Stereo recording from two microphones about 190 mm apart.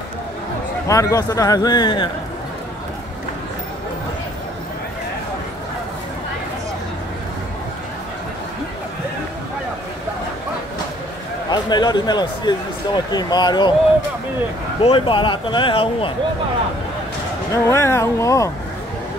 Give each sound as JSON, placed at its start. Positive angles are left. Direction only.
{"t": 0.8, "sound": "speech", "side_deg": 15}
{"t": 11.5, "sound": "speech", "side_deg": 20}
{"t": 14.8, "sound": "speech", "side_deg": 30}
{"t": 17.5, "sound": "speech", "side_deg": 15}